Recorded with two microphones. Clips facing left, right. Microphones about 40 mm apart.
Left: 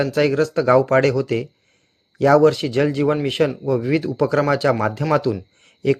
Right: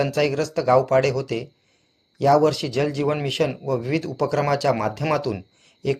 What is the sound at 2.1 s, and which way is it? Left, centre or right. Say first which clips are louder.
Speech: left 4 dB; left.